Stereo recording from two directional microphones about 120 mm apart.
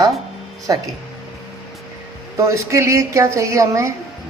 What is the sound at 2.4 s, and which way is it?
Speech, 25° right (ahead or behind).